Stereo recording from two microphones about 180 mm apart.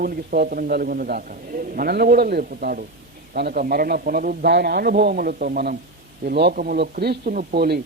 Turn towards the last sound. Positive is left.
turn(degrees=-60)  # may be behind; listen again after turning